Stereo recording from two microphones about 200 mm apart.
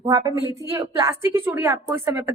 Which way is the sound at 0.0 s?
15° right (ahead or behind).